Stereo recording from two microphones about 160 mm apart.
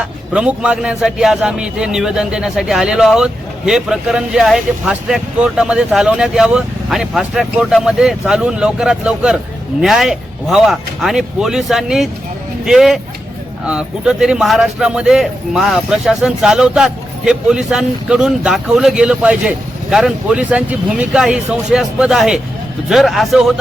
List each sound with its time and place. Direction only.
0.0 s speech: 5° right (ahead or behind)